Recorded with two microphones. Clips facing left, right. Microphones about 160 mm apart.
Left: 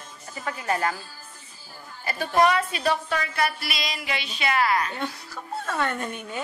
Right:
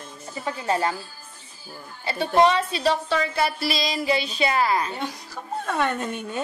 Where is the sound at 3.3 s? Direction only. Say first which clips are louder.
Right 3 dB; 30° right (ahead or behind).